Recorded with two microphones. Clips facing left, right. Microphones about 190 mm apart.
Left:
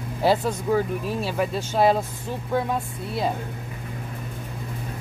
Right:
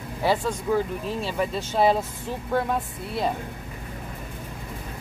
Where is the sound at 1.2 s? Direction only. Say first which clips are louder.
Left 1 dB; 5° left (ahead or behind).